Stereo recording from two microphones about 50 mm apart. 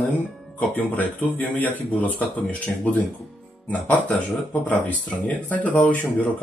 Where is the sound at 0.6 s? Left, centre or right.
Left.